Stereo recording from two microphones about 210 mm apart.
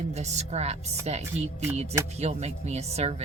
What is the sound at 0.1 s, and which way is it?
Speech, 30° right (ahead or behind).